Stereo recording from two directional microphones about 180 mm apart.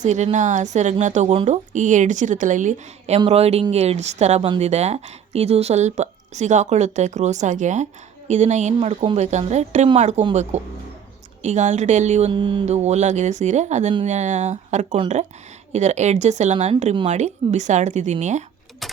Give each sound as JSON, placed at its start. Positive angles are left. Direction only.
{"t": 0.0, "sound": "a woman's voice", "side_deg": -40}
{"t": 11.4, "sound": "speech", "side_deg": -40}
{"t": 12.3, "sound": "speech", "side_deg": -25}
{"t": 18.8, "sound": "keys jangling", "side_deg": 0}